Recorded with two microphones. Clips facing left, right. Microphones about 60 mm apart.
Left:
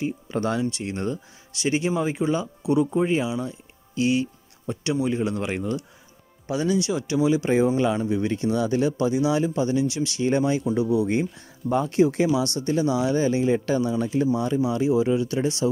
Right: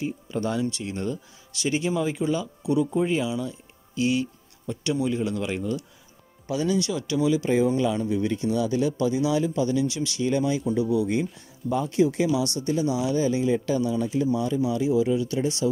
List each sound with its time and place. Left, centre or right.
0.0 s speech: left
1.6 s speech: left
6.4 s speech: left
9.1 s speech: left
11.7 s speech: left
12.0 s speech: left
14.9 s speech: left